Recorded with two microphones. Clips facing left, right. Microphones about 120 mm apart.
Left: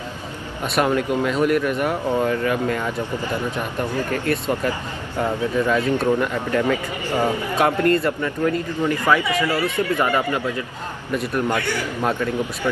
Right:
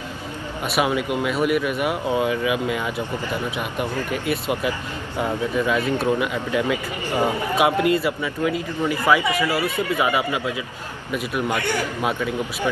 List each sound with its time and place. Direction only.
0.7 s a man's voice: 10° right (ahead or behind)